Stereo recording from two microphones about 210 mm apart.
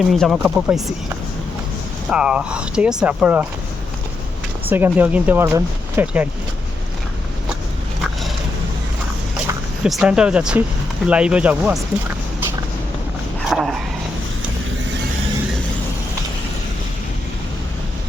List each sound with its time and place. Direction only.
0.1 s speech: centre (ahead or behind)
2.0 s speech: 5° right (ahead or behind)
4.7 s speech: 10° right (ahead or behind)
9.8 s speech: 5° right (ahead or behind)
13.5 s a sound: centre (ahead or behind)